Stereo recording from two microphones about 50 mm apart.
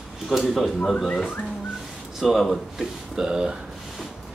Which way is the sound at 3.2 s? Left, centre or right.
Centre.